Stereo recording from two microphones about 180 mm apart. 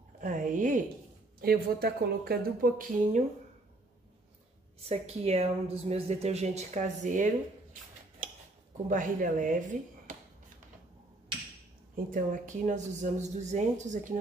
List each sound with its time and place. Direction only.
0.2 s a sound: 45° right (ahead or behind)
1.4 s a woman's voice: 60° right (ahead or behind)
4.8 s a woman's voice: 35° right (ahead or behind)
8.8 s speech: 45° right (ahead or behind)
11.9 s speech: 50° right (ahead or behind)